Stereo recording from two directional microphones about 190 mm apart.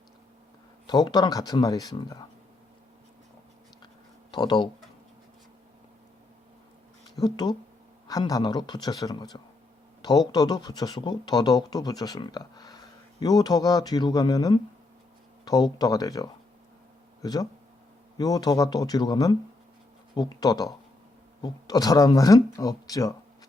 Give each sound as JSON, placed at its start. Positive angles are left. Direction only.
{"t": 0.9, "sound": "speech", "side_deg": 20}
{"t": 4.3, "sound": "speech", "side_deg": 25}
{"t": 7.2, "sound": "speech", "side_deg": 20}
{"t": 17.2, "sound": "speech", "side_deg": 20}